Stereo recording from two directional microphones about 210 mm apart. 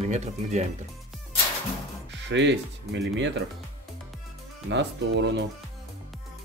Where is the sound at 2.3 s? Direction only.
55° right (ahead or behind).